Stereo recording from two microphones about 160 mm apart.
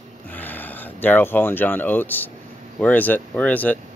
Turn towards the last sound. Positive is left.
turn(degrees=10)  # may be behind; listen again after turning